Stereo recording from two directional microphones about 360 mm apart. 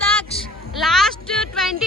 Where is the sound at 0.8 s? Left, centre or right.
Centre.